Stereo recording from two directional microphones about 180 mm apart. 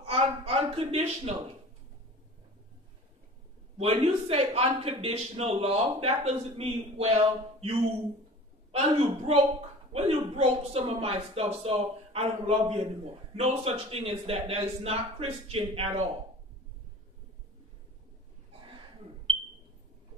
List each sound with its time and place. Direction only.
0.0 s a sound: 35° right (ahead or behind)
3.7 s speech: 35° right (ahead or behind)
8.7 s speech: 35° right (ahead or behind)